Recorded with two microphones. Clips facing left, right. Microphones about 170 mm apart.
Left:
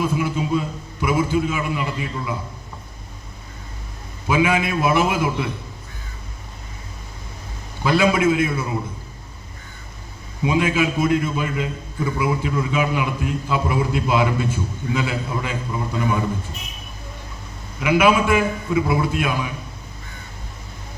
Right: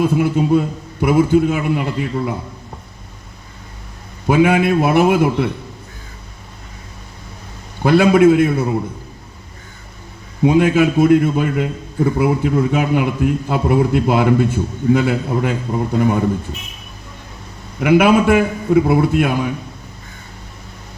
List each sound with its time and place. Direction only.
0.0 s a man's voice: 60° right (ahead or behind)
4.3 s a man's voice: 55° right (ahead or behind)
7.8 s a man's voice: 55° right (ahead or behind)
10.4 s a man's voice: 55° right (ahead or behind)
17.7 s a man's voice: 55° right (ahead or behind)